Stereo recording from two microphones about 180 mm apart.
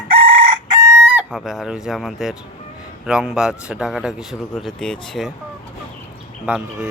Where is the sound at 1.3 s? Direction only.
Centre (ahead or behind).